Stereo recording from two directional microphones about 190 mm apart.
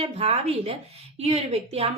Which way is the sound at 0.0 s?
30° right (ahead or behind).